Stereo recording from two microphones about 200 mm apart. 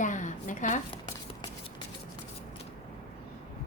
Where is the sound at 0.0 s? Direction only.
40° left (ahead or behind).